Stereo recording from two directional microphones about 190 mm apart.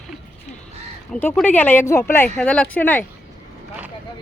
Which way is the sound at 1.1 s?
10° left (ahead or behind).